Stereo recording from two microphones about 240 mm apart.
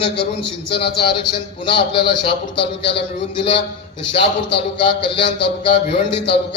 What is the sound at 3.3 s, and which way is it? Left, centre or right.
A man's voice, left.